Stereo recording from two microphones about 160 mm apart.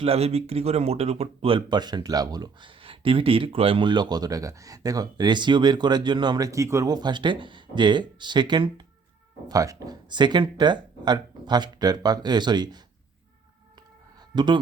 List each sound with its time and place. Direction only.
0.0 s speech: 40° right (ahead or behind)
14.3 s speech: 30° right (ahead or behind)